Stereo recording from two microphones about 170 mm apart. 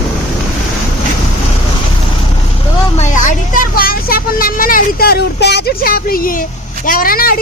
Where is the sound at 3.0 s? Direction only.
45° left (ahead or behind).